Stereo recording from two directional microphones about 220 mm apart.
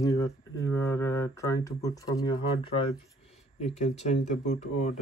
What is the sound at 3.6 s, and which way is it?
Speech, 30° left (ahead or behind).